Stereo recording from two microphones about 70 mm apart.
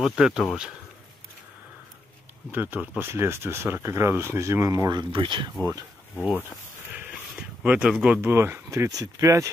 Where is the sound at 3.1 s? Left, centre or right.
Right.